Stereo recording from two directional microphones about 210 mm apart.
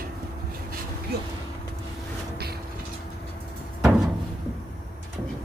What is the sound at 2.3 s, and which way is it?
Vehicle, 50° right (ahead or behind).